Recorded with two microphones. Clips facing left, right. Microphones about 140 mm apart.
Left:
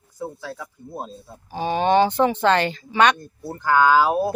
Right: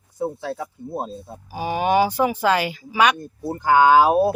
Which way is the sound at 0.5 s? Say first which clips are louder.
Right 5 dB; 25° right (ahead or behind).